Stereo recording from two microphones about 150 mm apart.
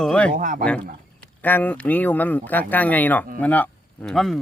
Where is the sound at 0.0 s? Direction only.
5° left (ahead or behind).